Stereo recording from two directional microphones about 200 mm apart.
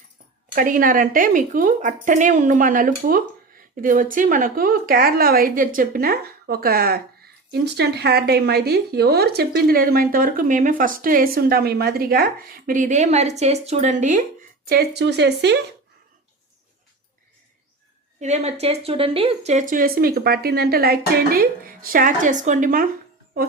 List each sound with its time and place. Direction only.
0.5 s speech: 45° right (ahead or behind)
14.7 s speech: 55° right (ahead or behind)
18.2 s speech: 35° right (ahead or behind)